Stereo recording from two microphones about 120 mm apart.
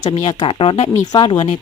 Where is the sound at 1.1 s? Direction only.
40° left (ahead or behind).